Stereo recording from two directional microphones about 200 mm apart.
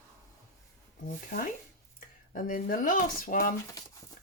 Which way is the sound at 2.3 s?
40° left (ahead or behind).